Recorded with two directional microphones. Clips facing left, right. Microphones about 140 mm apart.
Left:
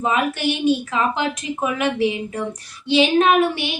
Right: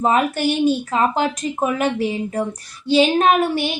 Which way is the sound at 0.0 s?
40° right (ahead or behind).